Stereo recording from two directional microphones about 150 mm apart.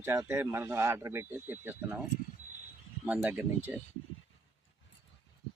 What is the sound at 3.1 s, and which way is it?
Speech, 10° right (ahead or behind).